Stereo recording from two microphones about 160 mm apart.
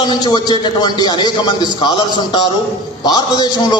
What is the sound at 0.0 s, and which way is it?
A man's voice, 25° left (ahead or behind).